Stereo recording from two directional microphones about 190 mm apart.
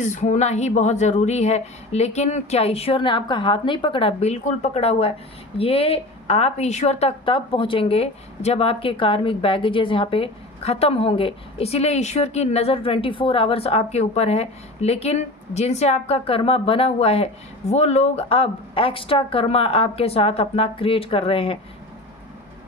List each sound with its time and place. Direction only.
0.0 s a woman's voice: 40° left (ahead or behind)